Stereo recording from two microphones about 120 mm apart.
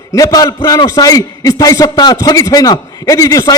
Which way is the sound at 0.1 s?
30° left (ahead or behind).